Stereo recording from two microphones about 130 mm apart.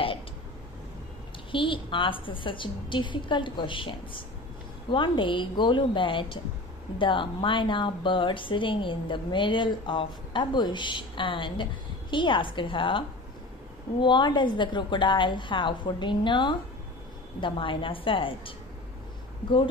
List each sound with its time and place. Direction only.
1.5 s speech: 40° left (ahead or behind)
14.0 s speech: 35° left (ahead or behind)